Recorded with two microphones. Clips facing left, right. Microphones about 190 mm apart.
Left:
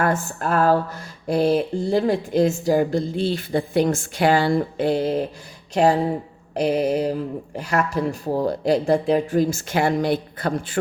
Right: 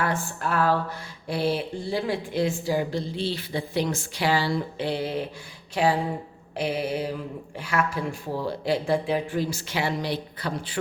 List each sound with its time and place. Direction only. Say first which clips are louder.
0.0 s speech: left 5 dB; 45° left (ahead or behind)